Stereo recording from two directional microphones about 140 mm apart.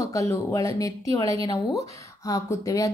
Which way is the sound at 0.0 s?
25° left (ahead or behind).